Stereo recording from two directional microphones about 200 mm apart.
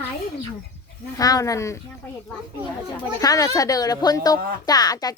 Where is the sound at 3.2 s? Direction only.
20° left (ahead or behind).